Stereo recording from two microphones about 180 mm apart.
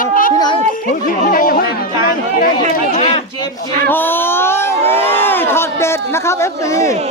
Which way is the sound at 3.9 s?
10° left (ahead or behind).